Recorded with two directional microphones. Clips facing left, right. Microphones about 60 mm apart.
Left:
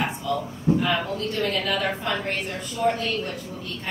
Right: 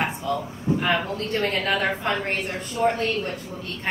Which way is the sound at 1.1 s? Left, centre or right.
Right.